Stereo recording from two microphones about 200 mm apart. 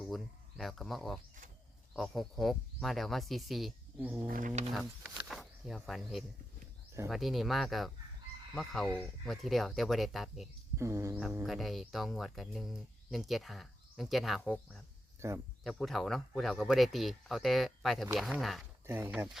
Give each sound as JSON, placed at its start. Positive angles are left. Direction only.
{"t": 0.1, "sound": "speech", "side_deg": 0}
{"t": 4.3, "sound": "a sound", "side_deg": -40}
{"t": 4.7, "sound": "speech", "side_deg": 0}
{"t": 10.8, "sound": "speech", "side_deg": -15}
{"t": 15.2, "sound": "speech", "side_deg": -15}
{"t": 15.6, "sound": "speech", "side_deg": 0}
{"t": 18.9, "sound": "speech", "side_deg": -10}